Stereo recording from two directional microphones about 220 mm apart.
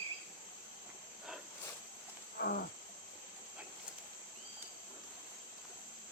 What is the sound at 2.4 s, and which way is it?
Wild animals, 45° left (ahead or behind).